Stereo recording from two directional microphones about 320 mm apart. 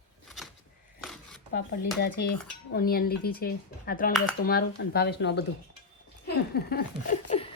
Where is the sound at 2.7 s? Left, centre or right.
Left.